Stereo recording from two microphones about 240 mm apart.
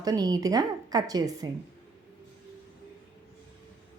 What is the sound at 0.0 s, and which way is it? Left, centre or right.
A woman's voice, centre.